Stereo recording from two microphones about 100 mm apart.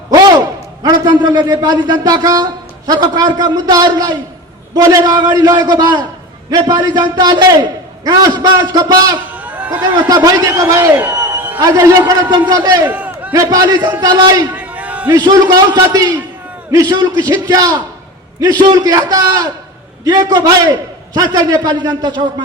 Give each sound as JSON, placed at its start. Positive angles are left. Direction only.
{"t": 0.1, "sound": "a man's voice", "side_deg": -40}
{"t": 9.3, "sound": "a sound", "side_deg": -15}
{"t": 10.1, "sound": "a man's voice", "side_deg": -35}
{"t": 10.8, "sound": "speech", "side_deg": -20}
{"t": 11.6, "sound": "a man's voice", "side_deg": -35}
{"t": 12.8, "sound": "crowd", "side_deg": -15}
{"t": 13.3, "sound": "a man's voice", "side_deg": -40}
{"t": 14.5, "sound": "a sound", "side_deg": -15}
{"t": 15.1, "sound": "a man's voice", "side_deg": -40}